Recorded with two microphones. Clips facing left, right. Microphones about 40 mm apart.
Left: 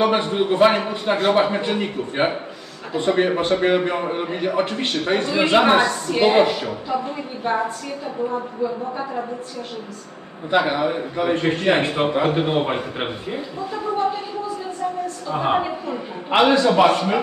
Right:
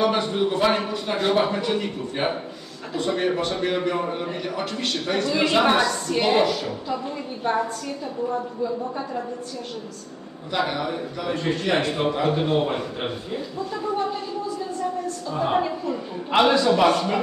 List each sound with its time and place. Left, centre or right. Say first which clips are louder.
0.0 s a man's voice: left 3 dB; left
6.0 s a woman's voice: left 6 dB; centre
6.4 s a man's voice: left 2 dB; left
10.5 s a man's voice: left 6 dB; left
15.3 s a man's voice: left 3 dB; left
15.6 s a man's voice: even; left